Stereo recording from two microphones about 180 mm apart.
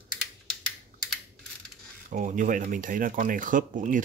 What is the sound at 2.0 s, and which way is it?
Speech, 45° right (ahead or behind).